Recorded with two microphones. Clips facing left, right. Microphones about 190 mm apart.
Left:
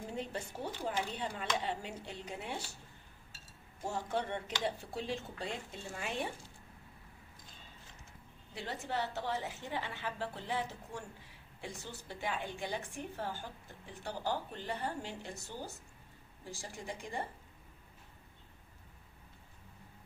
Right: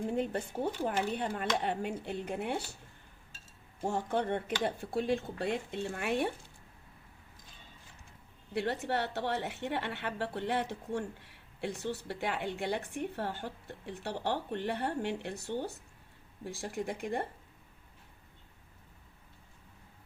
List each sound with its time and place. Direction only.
0.1 s speech: 55° right (ahead or behind)
3.8 s speech: 55° right (ahead or behind)
8.5 s a woman's voice: 65° right (ahead or behind)